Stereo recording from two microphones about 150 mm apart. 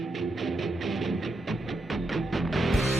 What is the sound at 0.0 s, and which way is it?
Music, centre (ahead or behind).